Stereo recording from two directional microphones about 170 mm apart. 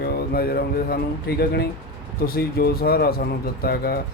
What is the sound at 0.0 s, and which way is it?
Speech, 65° left (ahead or behind).